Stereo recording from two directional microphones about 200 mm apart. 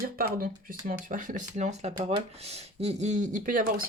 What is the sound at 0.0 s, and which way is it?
Speech, 45° right (ahead or behind).